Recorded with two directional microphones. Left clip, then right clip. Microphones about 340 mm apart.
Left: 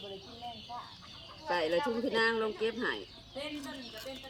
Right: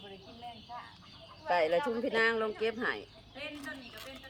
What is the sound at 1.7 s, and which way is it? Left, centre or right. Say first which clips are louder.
Speech: right 1 dB; centre.